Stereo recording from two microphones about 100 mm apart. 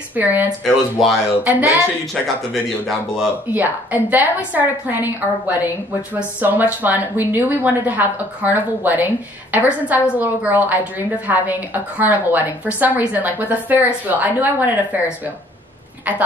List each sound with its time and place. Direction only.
0.1 s a woman's voice: 15° right (ahead or behind)
0.7 s speech: centre (ahead or behind)
1.4 s a woman's voice: 20° right (ahead or behind)
2.5 s speech: centre (ahead or behind)
3.4 s a woman's voice: 15° right (ahead or behind)